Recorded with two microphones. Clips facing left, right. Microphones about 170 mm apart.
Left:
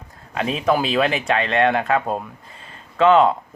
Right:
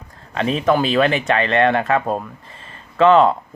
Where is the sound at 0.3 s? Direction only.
Centre (ahead or behind).